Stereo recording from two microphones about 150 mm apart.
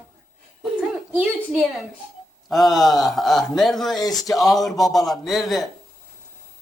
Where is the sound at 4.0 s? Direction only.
25° left (ahead or behind).